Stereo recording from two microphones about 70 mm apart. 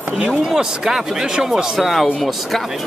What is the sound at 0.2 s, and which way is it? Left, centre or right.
Speech, centre.